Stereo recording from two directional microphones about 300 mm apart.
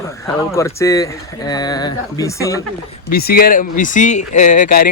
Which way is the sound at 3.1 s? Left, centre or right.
Left.